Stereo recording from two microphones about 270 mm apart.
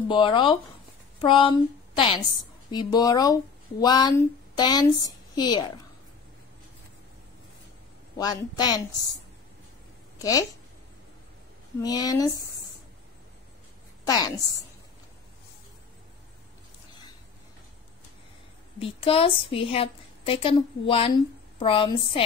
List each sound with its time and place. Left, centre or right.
0.1 s a woman's voice: centre
8.2 s speech: centre
10.1 s speech: centre
11.8 s speech: centre
14.0 s a woman's voice: centre
18.8 s a woman's voice: left